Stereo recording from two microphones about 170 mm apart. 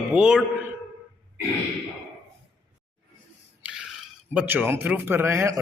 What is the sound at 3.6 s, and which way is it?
A man's voice, 5° right (ahead or behind).